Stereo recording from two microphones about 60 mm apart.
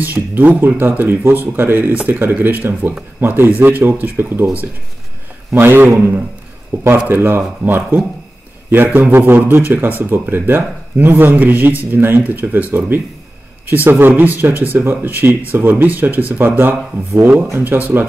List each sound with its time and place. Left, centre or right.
0.0 s speech: right